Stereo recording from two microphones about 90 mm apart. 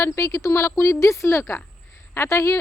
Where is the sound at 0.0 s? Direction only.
35° left (ahead or behind).